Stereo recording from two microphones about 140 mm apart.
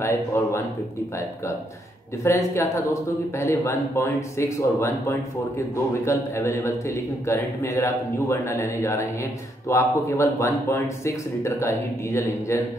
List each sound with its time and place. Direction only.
0.0 s a man's voice: 20° left (ahead or behind)
2.2 s a man's voice: 20° left (ahead or behind)